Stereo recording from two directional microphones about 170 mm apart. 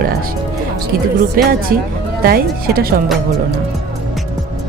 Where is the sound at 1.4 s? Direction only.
60° right (ahead or behind).